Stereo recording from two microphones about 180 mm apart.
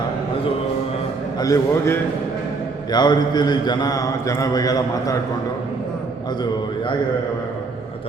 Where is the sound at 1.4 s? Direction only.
15° left (ahead or behind).